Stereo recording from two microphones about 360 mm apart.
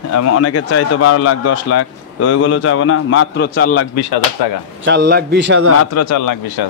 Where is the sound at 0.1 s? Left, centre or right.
Left.